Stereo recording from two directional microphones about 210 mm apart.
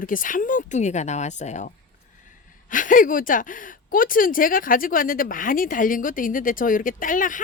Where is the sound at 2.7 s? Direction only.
40° left (ahead or behind).